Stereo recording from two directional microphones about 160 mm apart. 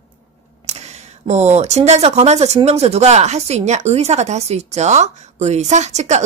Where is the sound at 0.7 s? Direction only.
45° right (ahead or behind).